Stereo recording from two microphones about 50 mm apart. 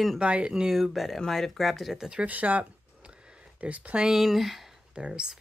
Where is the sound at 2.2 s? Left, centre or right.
Right.